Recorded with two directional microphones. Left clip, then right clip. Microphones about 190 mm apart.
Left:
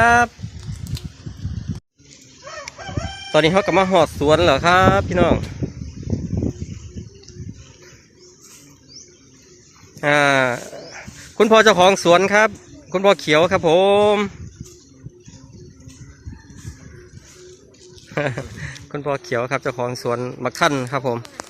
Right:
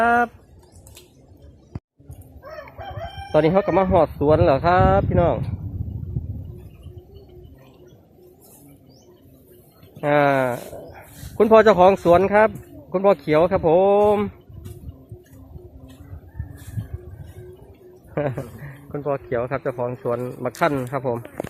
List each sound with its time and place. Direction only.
0.0 s a sound: centre (ahead or behind)
3.3 s speech: 10° left (ahead or behind)
10.0 s speech: 15° left (ahead or behind)
18.1 s speech: 10° left (ahead or behind)